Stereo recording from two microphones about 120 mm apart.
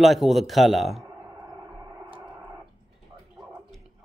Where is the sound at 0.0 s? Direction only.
Centre (ahead or behind).